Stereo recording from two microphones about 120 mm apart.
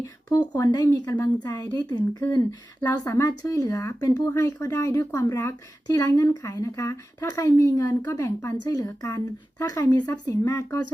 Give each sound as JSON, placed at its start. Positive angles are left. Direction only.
{"t": 0.0, "sound": "a woman's voice", "side_deg": 30}